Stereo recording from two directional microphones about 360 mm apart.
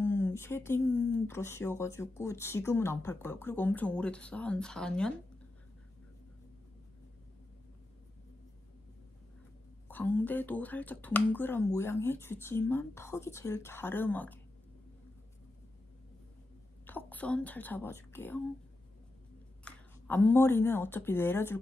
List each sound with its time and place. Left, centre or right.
0.0 s speech: centre
9.8 s speech: centre
16.8 s a woman's voice: centre
19.6 s speech: centre